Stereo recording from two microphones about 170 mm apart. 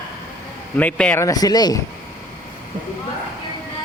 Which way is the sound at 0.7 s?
10° left (ahead or behind).